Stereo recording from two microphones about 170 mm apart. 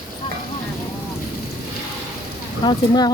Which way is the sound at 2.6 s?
25° left (ahead or behind).